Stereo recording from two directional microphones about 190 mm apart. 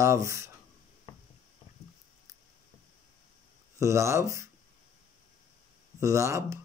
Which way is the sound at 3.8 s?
15° right (ahead or behind).